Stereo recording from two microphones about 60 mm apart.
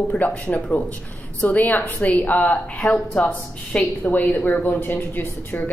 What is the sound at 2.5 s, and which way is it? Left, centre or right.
A woman's voice, centre.